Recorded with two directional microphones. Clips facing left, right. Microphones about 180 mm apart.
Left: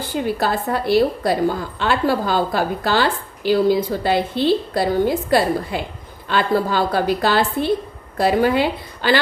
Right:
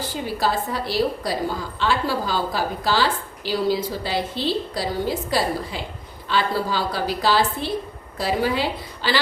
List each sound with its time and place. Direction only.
0.0 s a woman's voice: 55° left (ahead or behind)